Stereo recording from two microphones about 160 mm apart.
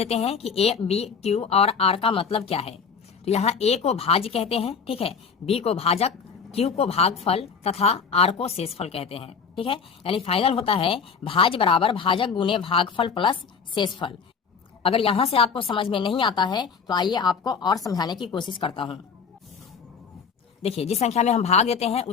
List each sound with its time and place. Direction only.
0.0 s a woman's voice: 40° left (ahead or behind)
20.6 s a woman's voice: 40° left (ahead or behind)